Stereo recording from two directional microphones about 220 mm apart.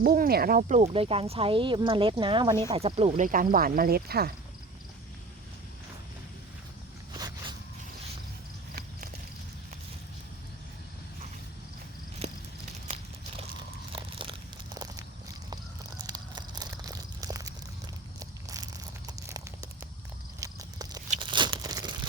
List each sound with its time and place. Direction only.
0.0 s speech: 45° right (ahead or behind); by 3.2 s 25° right (ahead or behind)
3.2 s speech: 40° right (ahead or behind)
7.1 s a sound: 20° right (ahead or behind)
13.9 s biting: 25° right (ahead or behind)
15.4 s a sound: 20° right (ahead or behind)
18.2 s tearing: 15° right (ahead or behind)
20.4 s walk: 15° right (ahead or behind)
21.2 s tearing: 20° right (ahead or behind)